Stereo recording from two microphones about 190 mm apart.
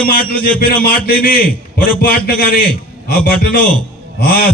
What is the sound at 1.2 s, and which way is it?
A man's voice, 50° left (ahead or behind).